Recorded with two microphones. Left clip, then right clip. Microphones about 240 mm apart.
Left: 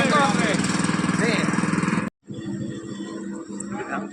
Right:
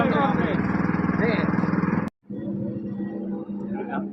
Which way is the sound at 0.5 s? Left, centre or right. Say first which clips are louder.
Left 2 dB; left.